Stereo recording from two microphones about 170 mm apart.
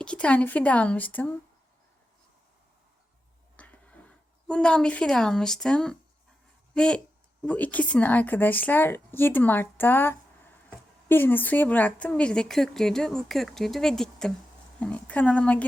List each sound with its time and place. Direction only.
0.0 s a woman's voice: 5° left (ahead or behind)
3.6 s a woman's voice: 10° left (ahead or behind)